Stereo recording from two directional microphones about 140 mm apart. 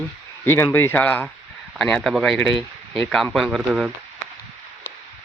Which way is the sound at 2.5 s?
35° right (ahead or behind).